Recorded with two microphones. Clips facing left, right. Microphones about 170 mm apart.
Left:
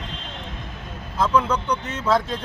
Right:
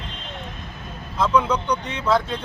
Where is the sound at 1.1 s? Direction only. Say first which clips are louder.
Right 1 dB; 5° left (ahead or behind).